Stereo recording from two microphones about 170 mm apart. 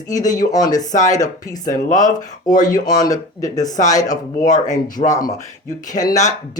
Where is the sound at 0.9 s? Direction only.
45° left (ahead or behind).